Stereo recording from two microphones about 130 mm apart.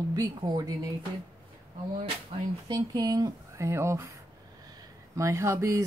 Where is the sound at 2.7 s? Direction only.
30° right (ahead or behind).